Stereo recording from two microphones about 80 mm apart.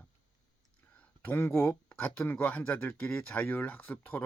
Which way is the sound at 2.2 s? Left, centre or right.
Left.